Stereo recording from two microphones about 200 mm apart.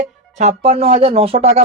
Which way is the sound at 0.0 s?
35° right (ahead or behind).